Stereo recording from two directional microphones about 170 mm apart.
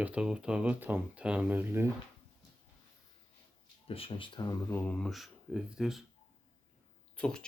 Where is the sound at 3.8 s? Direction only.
35° left (ahead or behind).